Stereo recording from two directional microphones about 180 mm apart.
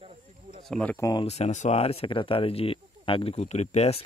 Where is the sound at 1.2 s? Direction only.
35° left (ahead or behind).